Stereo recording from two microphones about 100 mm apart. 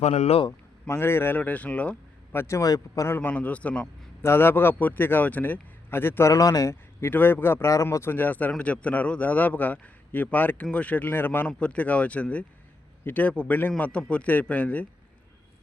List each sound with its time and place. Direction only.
0.1 s a man's voice: 90° left
0.9 s speech: 25° left (ahead or behind)
2.4 s speech: 30° left (ahead or behind)
3.2 s speech: 15° left (ahead or behind)
4.2 s a man's voice: 25° left (ahead or behind)
7.0 s speech: 20° left (ahead or behind)